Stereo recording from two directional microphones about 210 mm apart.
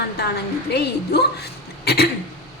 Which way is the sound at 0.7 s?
50° left (ahead or behind).